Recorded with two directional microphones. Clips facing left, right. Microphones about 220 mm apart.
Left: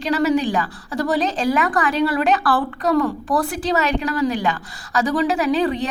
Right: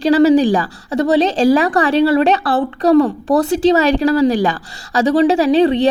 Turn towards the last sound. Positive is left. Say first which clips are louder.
# right 7 dB
turn(degrees=-25)  # may be behind; listen again after turning